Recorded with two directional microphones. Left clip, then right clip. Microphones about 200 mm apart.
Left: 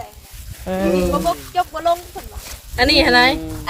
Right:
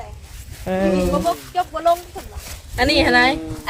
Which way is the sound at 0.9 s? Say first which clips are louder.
Left 1 dB; 35° left (ahead or behind).